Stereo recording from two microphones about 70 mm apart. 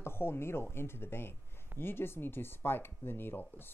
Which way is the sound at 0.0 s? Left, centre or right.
Left.